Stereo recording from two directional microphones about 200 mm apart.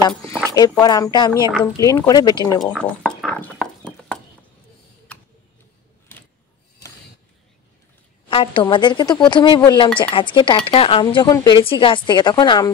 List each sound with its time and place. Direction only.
0.6 s speech: 20° left (ahead or behind)
2.6 s a sound: centre (ahead or behind)
8.3 s speech: 25° left (ahead or behind)